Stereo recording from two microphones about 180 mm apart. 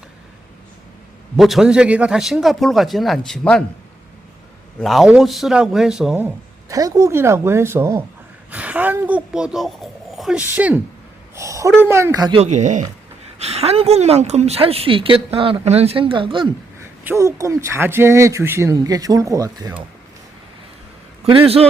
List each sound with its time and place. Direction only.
1.4 s a man's voice: centre (ahead or behind)
4.8 s a man's voice: centre (ahead or behind)
11.3 s a sound: 15° right (ahead or behind)
11.8 s a man's voice: 15° right (ahead or behind)
12.4 s a woman's voice: 40° right (ahead or behind)
17.0 s a man's voice: 15° right (ahead or behind)
21.2 s a woman's voice: 30° right (ahead or behind)